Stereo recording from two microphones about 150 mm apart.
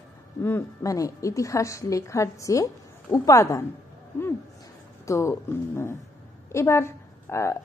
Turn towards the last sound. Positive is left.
turn(degrees=20)  # may be behind; listen again after turning